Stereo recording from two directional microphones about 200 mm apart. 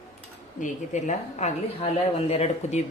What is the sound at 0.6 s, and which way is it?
A woman's voice, 35° left (ahead or behind).